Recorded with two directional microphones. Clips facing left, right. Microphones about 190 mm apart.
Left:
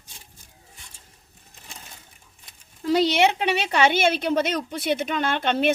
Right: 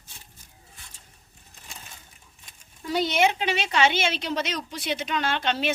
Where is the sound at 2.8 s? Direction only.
85° left.